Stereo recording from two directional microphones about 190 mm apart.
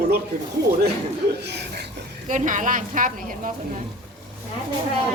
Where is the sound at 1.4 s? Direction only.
60° right (ahead or behind).